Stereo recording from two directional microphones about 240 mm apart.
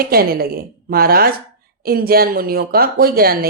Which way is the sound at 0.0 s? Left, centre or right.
Right.